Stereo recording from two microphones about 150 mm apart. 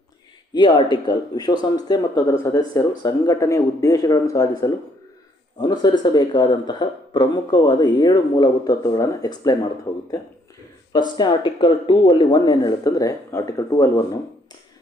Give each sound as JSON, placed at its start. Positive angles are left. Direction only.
{"t": 0.5, "sound": "speech", "side_deg": 30}
{"t": 10.9, "sound": "speech", "side_deg": 30}